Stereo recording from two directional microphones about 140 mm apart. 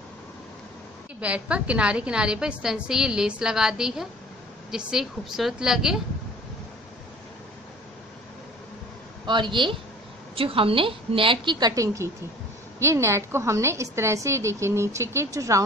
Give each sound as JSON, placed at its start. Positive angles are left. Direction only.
{"t": 1.2, "sound": "a woman's voice", "side_deg": -10}
{"t": 9.2, "sound": "a woman's voice", "side_deg": -35}